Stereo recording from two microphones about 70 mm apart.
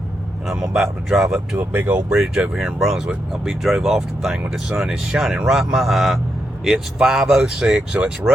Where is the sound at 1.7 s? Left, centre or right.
Right.